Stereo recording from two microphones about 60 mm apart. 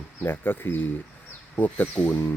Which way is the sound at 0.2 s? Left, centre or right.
Left.